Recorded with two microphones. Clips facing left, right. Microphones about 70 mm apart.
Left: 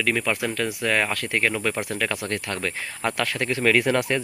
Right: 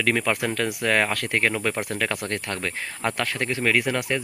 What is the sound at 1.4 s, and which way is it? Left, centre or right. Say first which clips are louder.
Speech: left 1 dB; right.